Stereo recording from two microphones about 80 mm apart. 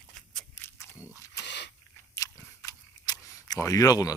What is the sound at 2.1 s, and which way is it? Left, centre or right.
Camera, left.